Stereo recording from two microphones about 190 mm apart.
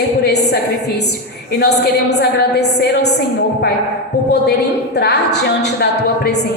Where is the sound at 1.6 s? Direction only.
60° left (ahead or behind).